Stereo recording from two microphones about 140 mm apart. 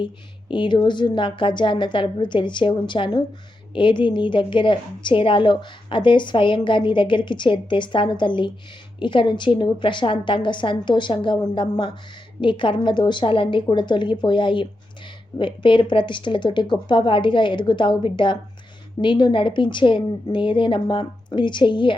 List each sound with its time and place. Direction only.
0.0 s a woman's voice: 35° left (ahead or behind)